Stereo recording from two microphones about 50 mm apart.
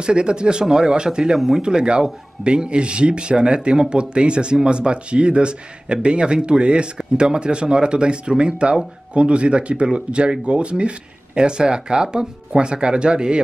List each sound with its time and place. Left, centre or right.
0.0 s speech: centre